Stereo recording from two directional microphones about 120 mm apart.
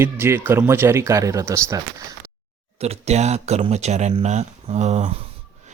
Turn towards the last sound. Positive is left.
turn(degrees=-75)  # may be behind; listen again after turning